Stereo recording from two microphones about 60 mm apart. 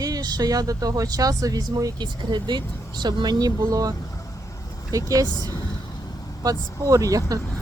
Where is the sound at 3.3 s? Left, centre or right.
Right.